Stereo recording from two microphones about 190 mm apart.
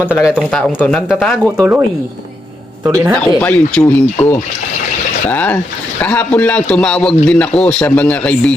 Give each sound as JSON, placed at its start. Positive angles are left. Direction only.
{"t": 0.0, "sound": "speech", "side_deg": -5}
{"t": 0.3, "sound": "speech", "side_deg": 5}
{"t": 2.8, "sound": "speech", "side_deg": -15}
{"t": 3.2, "sound": "a man's voice", "side_deg": 5}
{"t": 5.3, "sound": "a man's voice", "side_deg": 10}